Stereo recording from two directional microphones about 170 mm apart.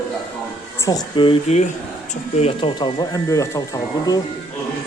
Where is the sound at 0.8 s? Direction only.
20° left (ahead or behind).